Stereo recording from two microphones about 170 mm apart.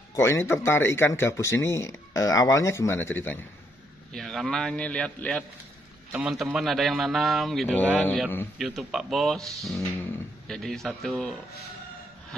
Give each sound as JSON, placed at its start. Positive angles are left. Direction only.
{"t": 0.1, "sound": "a man's voice", "side_deg": 15}